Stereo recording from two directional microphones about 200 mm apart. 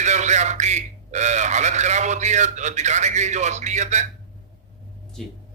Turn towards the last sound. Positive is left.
turn(degrees=0)  # may be behind; listen again after turning